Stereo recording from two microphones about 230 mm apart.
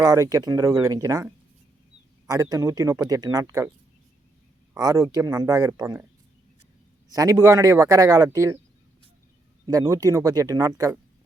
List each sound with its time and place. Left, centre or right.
0.0 s speech: centre
4.7 s speech: centre
7.1 s speech: centre
9.6 s speech: centre